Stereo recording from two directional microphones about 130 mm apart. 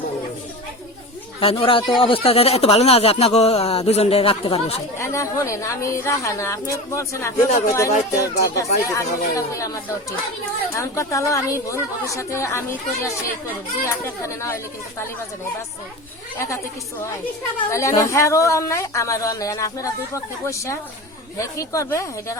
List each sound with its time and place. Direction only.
1.4 s speech: 45° left (ahead or behind)
4.9 s speech: 20° left (ahead or behind)
17.7 s speech: 20° left (ahead or behind)